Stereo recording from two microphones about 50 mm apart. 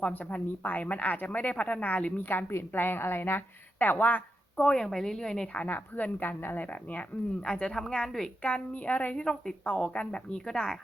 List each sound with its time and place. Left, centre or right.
0.0 s speech: left
2.7 s a woman's voice: left
4.6 s a woman's voice: centre
5.6 s speech: left
7.4 s a woman's voice: centre
8.4 s a woman's voice: left
9.2 s a woman's voice: centre
9.6 s a woman's voice: left